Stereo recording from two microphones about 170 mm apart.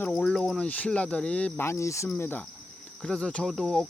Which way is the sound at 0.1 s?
5° left (ahead or behind).